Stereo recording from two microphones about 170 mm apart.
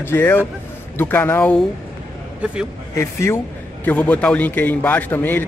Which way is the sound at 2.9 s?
15° left (ahead or behind).